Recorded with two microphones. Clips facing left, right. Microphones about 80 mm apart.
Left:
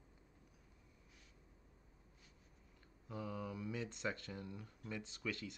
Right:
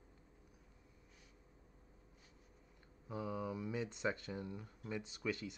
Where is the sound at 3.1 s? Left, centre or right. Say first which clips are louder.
Right 3 dB; centre.